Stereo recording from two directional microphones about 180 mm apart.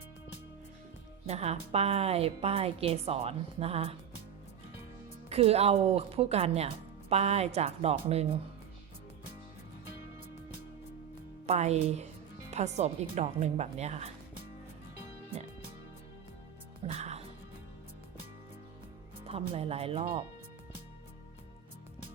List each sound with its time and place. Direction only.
1.3 s speech: 35° right (ahead or behind)
5.3 s speech: 35° right (ahead or behind)
11.4 s speech: 35° right (ahead or behind)
16.8 s music: 35° right (ahead or behind)
19.5 s speech: 35° right (ahead or behind)